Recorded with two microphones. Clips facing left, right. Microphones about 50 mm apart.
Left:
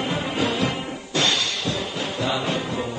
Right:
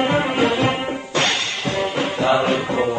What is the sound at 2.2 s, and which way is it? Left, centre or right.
Music, right.